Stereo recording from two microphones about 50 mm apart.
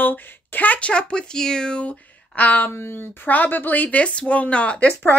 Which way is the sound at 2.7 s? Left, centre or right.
Left.